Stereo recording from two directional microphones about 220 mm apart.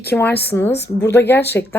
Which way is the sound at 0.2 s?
10° left (ahead or behind).